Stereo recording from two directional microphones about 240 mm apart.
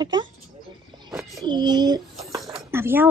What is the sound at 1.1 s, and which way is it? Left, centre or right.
Speech, centre.